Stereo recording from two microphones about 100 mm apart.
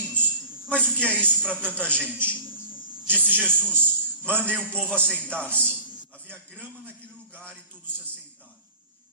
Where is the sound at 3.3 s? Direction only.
10° left (ahead or behind).